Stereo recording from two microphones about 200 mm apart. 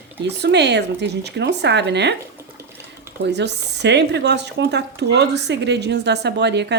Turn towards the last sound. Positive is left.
turn(degrees=-60)  # may be behind; listen again after turning